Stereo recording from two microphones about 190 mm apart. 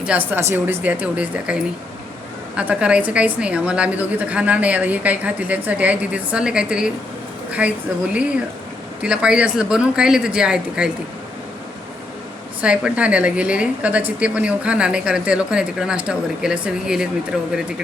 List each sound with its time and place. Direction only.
0.0 s a woman's voice: 10° right (ahead or behind)
9.0 s a woman's voice: 5° right (ahead or behind)
12.6 s a woman's voice: 5° right (ahead or behind)